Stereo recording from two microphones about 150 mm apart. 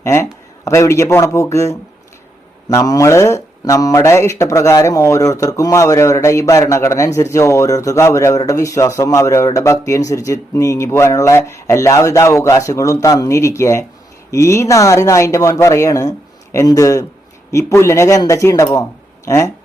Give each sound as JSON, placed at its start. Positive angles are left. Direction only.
{"t": 0.0, "sound": "speech", "side_deg": 20}